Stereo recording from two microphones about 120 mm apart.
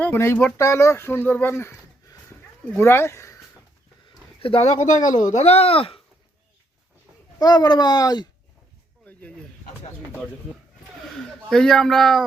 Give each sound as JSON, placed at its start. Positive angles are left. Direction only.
{"t": 0.0, "sound": "speech", "side_deg": 20}
{"t": 4.4, "sound": "speech", "side_deg": 50}
{"t": 4.8, "sound": "speech", "side_deg": 90}
{"t": 5.2, "sound": "speech", "side_deg": 70}
{"t": 7.3, "sound": "speech", "side_deg": 35}
{"t": 11.2, "sound": "speech", "side_deg": 5}